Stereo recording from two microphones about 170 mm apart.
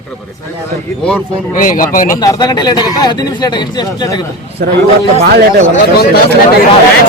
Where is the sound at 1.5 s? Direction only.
50° left (ahead or behind).